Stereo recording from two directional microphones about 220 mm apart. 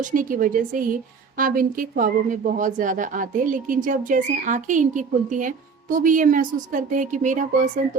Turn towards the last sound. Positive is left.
turn(degrees=-35)  # may be behind; listen again after turning